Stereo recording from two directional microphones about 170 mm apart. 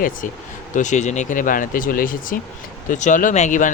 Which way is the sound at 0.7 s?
45° left (ahead or behind).